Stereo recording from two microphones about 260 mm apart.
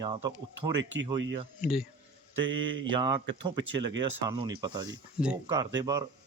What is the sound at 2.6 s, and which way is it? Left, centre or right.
Speech, right.